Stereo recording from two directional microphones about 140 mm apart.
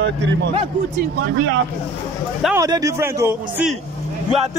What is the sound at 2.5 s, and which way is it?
A man's voice, 25° right (ahead or behind).